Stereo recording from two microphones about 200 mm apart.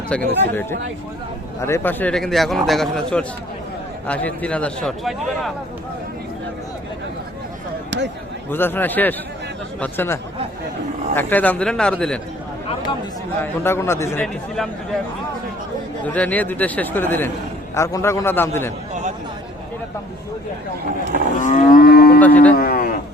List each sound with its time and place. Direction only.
0.1 s a man's voice: 10° left (ahead or behind)
7.9 s a sound: 60° right (ahead or behind)
8.4 s a man's voice: 10° left (ahead or behind)
13.4 s speech: 10° left (ahead or behind)
16.0 s speech: 5° left (ahead or behind)
21.4 s livestock: 40° left (ahead or behind)
22.2 s music: 10° left (ahead or behind)
22.5 s a sound: 50° left (ahead or behind)